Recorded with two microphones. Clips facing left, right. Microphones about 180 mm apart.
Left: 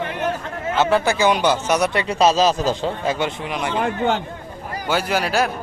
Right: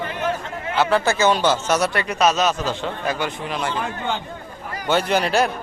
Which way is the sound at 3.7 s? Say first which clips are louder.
Left 6 dB; 60° left (ahead or behind).